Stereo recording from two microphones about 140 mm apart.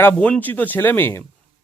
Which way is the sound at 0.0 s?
10° left (ahead or behind).